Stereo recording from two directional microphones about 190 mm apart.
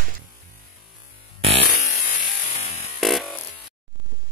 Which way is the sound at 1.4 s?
30° right (ahead or behind).